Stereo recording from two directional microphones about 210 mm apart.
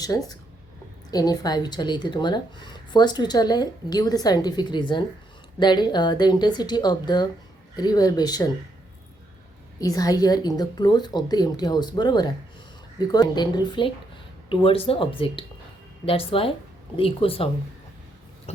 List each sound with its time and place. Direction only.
0.0 s a woman's voice: 15° left (ahead or behind)
9.7 s a woman's voice: 15° left (ahead or behind)
18.5 s chewing: 30° left (ahead or behind)